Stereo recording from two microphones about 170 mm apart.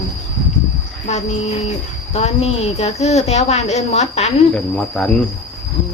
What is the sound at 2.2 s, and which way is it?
A woman's voice, 40° left (ahead or behind).